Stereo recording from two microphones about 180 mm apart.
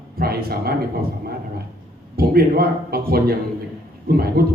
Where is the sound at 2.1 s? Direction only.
60° right (ahead or behind).